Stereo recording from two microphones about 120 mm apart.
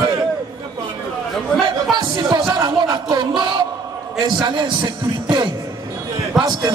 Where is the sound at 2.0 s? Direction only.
40° right (ahead or behind).